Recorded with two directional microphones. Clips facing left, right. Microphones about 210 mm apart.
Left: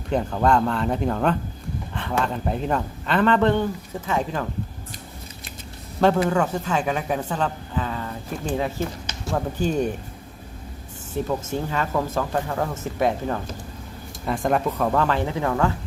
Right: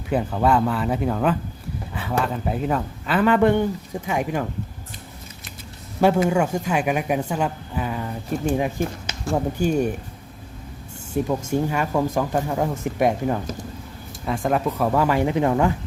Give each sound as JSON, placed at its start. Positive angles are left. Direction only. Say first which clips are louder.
{"t": 0.1, "sound": "speech", "louder": "even", "side_deg": -5}
{"t": 6.2, "sound": "a woman's voice", "louder": "right 2 dB", "side_deg": -10}
{"t": 11.1, "sound": "speech", "louder": "right 3 dB", "side_deg": -15}
{"t": 14.3, "sound": "speech", "louder": "even", "side_deg": 0}